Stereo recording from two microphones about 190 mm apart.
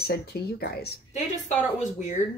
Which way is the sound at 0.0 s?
55° left (ahead or behind).